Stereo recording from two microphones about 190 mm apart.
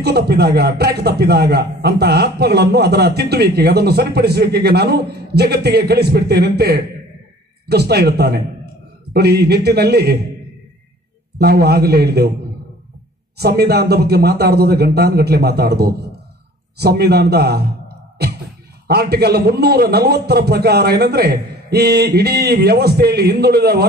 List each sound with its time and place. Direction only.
0.0 s a man's voice: 60° right (ahead or behind)
11.3 s a man's voice: 60° right (ahead or behind)
13.4 s a man's voice: 60° right (ahead or behind)
18.9 s a man's voice: 55° right (ahead or behind)